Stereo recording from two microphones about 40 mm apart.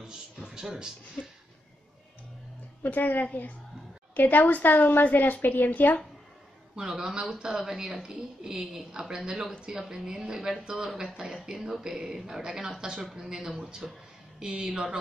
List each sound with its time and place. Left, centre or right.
1.2 s a sound: left
2.8 s a woman's voice: left
6.9 s a woman's voice: centre
7.2 s a woman's voice: centre